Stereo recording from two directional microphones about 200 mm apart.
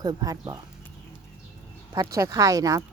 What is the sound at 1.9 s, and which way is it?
Speech, 15° right (ahead or behind).